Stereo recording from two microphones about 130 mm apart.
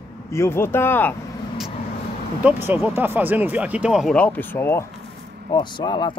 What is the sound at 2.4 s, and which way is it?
Speech, 15° right (ahead or behind).